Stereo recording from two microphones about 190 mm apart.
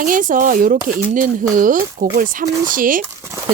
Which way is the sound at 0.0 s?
45° right (ahead or behind).